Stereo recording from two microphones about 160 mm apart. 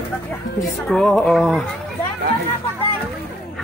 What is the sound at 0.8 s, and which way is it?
Speech, centre (ahead or behind).